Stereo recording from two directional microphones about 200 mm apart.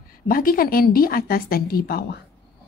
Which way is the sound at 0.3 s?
45° left (ahead or behind).